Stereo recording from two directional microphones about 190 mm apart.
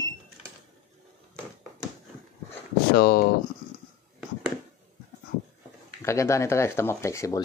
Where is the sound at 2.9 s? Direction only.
50° left (ahead or behind).